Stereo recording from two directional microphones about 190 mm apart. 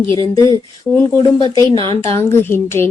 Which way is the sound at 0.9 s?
5° left (ahead or behind).